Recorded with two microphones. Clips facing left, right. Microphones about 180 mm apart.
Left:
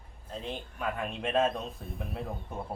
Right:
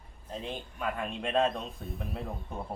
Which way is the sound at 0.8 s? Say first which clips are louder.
Even; centre (ahead or behind).